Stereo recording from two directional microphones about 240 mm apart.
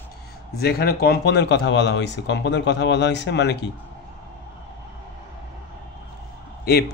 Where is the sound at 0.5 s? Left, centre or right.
Left.